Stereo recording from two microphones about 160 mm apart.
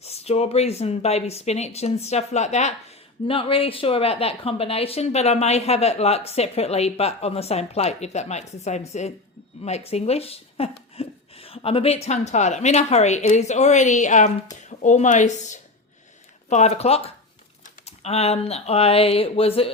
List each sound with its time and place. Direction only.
0.0 s a woman's voice: 40° left (ahead or behind)
3.2 s a woman's voice: 35° left (ahead or behind)